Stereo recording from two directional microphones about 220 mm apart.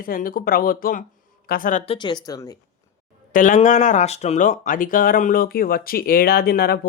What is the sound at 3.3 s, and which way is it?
Speech, 35° left (ahead or behind).